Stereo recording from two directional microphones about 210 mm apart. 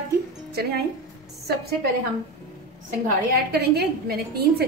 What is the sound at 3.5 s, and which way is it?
A woman's voice, 50° right (ahead or behind).